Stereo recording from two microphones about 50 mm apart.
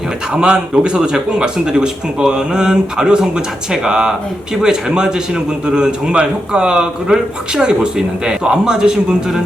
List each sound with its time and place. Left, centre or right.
0.3 s a man's voice: centre